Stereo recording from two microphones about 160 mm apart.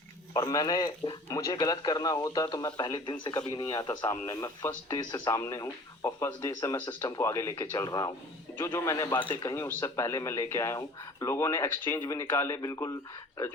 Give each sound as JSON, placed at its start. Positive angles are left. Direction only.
{"t": 0.3, "sound": "speech", "side_deg": 25}